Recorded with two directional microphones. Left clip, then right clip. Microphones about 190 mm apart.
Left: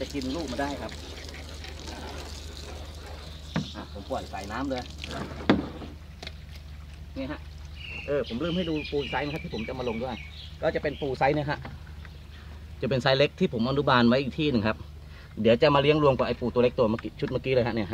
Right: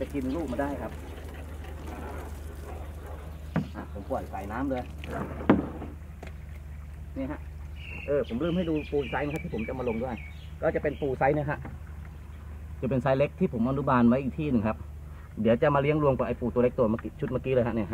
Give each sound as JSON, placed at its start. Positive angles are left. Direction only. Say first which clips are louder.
{"t": 0.0, "sound": "pour", "louder": "even", "side_deg": 10}
{"t": 8.1, "sound": "speech", "louder": "right 1 dB", "side_deg": 25}
{"t": 12.8, "sound": "speech", "louder": "left 3 dB", "side_deg": 35}